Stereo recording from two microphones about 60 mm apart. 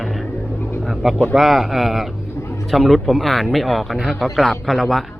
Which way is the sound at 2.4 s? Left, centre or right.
Left.